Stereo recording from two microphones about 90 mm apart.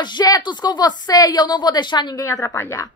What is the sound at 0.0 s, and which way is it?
A woman's voice, 50° left (ahead or behind).